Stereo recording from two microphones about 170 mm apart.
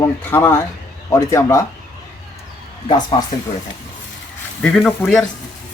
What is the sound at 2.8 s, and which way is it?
Speech, 30° left (ahead or behind).